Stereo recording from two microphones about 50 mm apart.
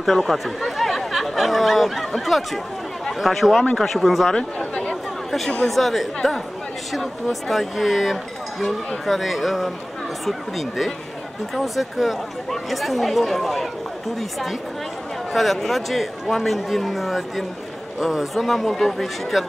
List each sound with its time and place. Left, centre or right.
0.0 s speech: centre
4.4 s chatter: centre
5.7 s speech: centre
15.3 s speech: centre